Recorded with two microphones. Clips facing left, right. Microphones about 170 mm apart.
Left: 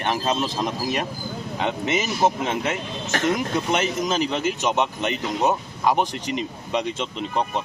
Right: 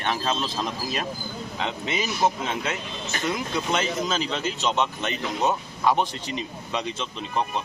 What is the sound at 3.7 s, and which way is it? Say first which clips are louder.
A man's voice: left 1 dB; 15° left (ahead or behind).